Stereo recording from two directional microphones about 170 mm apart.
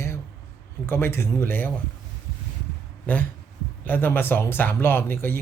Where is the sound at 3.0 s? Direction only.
10° left (ahead or behind).